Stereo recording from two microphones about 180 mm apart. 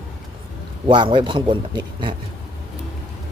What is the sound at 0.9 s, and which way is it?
A man's voice, 25° right (ahead or behind).